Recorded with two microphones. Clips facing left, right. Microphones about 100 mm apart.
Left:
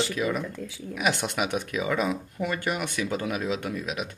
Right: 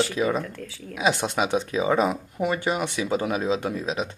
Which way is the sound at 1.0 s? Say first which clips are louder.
Right 4 dB; 25° right (ahead or behind).